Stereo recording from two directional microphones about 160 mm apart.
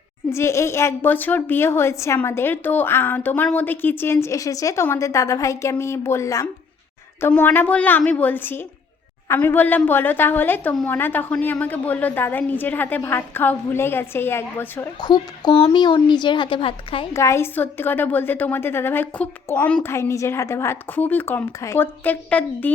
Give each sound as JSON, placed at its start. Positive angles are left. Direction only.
{"t": 0.3, "sound": "a woman's voice", "side_deg": 15}
{"t": 15.0, "sound": "a woman's voice", "side_deg": 30}
{"t": 17.2, "sound": "a woman's voice", "side_deg": 15}